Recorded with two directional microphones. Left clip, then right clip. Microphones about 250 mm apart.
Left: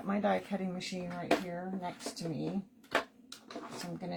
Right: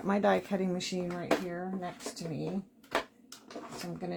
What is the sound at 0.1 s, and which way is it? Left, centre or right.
Speech, right.